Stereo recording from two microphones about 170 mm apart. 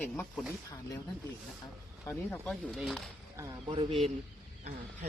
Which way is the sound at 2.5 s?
Centre (ahead or behind).